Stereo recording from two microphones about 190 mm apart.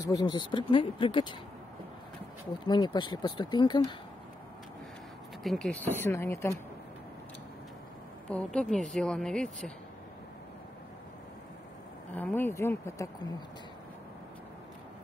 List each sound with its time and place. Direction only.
0.0 s speech: 20° left (ahead or behind)
2.6 s speech: 25° left (ahead or behind)
5.4 s speech: centre (ahead or behind)
8.3 s speech: 5° left (ahead or behind)
12.2 s speech: 10° left (ahead or behind)